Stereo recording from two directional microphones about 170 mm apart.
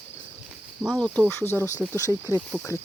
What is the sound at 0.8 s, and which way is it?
Speech, 5° right (ahead or behind).